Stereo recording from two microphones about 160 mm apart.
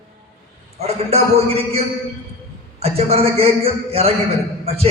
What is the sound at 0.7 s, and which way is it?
A man's voice, 40° right (ahead or behind).